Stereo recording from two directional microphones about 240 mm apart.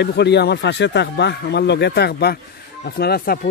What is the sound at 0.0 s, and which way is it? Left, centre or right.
Speech, left.